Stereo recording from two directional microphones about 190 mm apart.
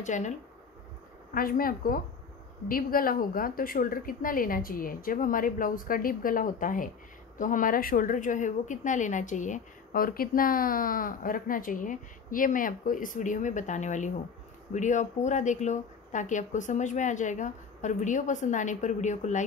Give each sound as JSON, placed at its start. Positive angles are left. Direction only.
{"t": 0.0, "sound": "speech", "side_deg": 40}
{"t": 1.3, "sound": "a woman's voice", "side_deg": 50}